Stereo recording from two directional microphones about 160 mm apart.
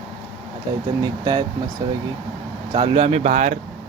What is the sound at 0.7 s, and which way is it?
Speech, 25° right (ahead or behind).